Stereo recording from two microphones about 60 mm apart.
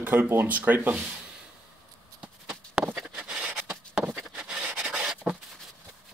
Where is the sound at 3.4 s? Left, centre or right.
Right.